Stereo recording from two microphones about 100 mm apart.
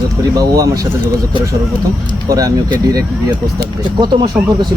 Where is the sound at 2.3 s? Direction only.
40° right (ahead or behind).